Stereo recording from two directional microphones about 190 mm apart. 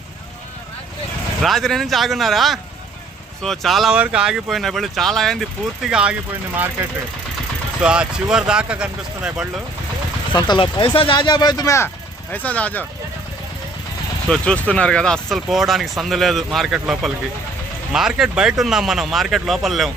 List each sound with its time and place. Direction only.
1.4 s speech: centre (ahead or behind)
7.8 s speech: 5° right (ahead or behind)
10.3 s speech: 25° left (ahead or behind); by 12.8 s 5° left (ahead or behind)
14.3 s speech: 5° left (ahead or behind)